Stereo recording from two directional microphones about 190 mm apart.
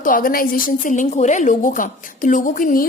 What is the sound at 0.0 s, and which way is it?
A woman's voice, 45° left (ahead or behind).